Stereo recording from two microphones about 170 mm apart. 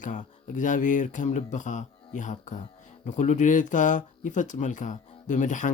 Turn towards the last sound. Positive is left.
turn(degrees=45)  # may be behind; listen again after turning